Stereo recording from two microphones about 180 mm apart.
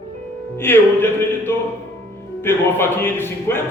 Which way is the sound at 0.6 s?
10° left (ahead or behind).